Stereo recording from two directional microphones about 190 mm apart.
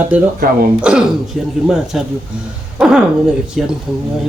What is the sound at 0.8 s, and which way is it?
Speech, 5° right (ahead or behind).